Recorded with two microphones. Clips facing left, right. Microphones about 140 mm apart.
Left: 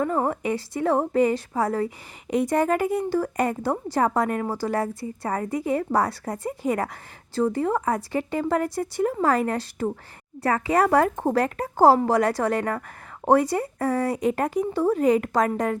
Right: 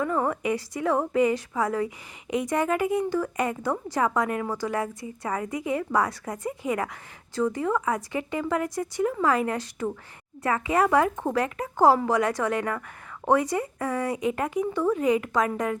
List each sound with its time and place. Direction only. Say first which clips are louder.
0.0 s a woman's voice: left 2 dB; 35° left (ahead or behind)